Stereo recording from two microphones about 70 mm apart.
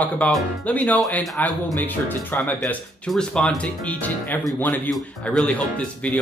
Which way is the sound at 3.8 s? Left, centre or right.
Left.